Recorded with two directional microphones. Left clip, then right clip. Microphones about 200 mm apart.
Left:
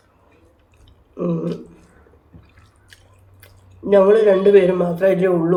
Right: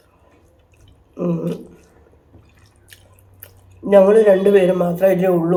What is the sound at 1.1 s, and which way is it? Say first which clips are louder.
Speech: right 1 dB; 15° right (ahead or behind).